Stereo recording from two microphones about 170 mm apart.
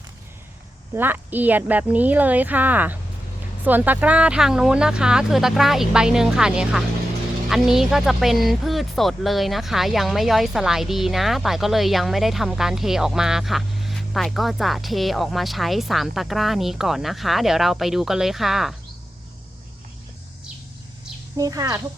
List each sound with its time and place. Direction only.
0.9 s speech: 10° right (ahead or behind)
21.3 s a child's voice: 20° right (ahead or behind)